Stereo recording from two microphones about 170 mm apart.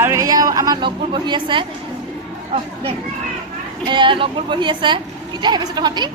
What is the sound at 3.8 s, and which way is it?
A woman's voice, 30° right (ahead or behind).